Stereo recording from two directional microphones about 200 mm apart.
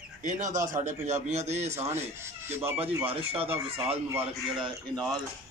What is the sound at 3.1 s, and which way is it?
Speech, 30° right (ahead or behind).